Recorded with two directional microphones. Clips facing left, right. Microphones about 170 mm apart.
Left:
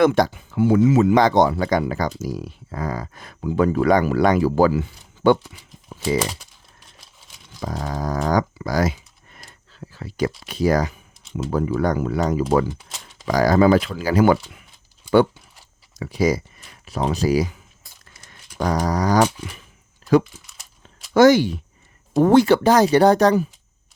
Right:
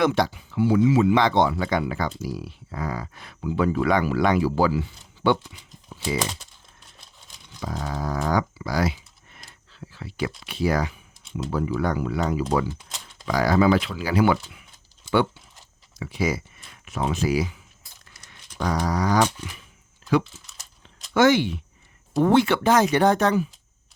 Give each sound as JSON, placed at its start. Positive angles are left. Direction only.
{"t": 0.0, "sound": "speech", "side_deg": 50}
{"t": 7.6, "sound": "speech", "side_deg": 40}
{"t": 12.8, "sound": "a sound", "side_deg": 0}
{"t": 13.2, "sound": "speech", "side_deg": 45}
{"t": 16.0, "sound": "speech", "side_deg": 40}
{"t": 18.3, "sound": "a sound", "side_deg": 45}
{"t": 21.1, "sound": "speech", "side_deg": 40}